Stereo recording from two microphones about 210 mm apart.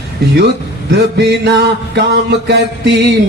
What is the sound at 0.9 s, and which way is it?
Music, 55° right (ahead or behind).